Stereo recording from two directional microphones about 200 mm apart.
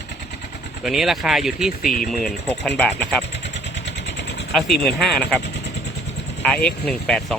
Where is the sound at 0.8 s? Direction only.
Centre (ahead or behind).